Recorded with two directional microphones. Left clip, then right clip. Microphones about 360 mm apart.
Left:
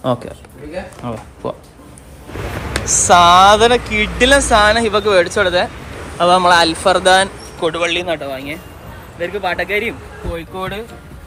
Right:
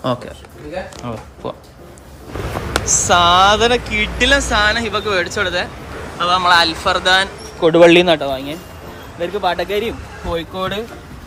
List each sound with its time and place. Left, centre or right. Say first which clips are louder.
0.0 s speech: left 2 dB; centre
2.9 s speech: left 4 dB; centre
7.6 s speech: right 8 dB; centre